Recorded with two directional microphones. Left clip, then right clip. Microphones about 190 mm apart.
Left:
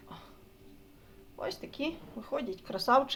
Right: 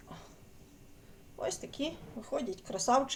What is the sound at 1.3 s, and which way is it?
Speech, 10° left (ahead or behind).